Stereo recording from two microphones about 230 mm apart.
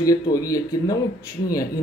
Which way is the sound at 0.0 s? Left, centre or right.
Centre.